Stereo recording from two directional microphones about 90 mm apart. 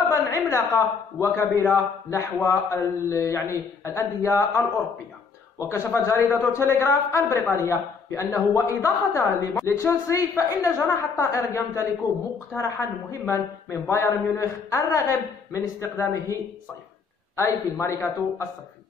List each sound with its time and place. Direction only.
0.1 s a man's voice: 35° left (ahead or behind)
17.4 s a man's voice: 35° left (ahead or behind)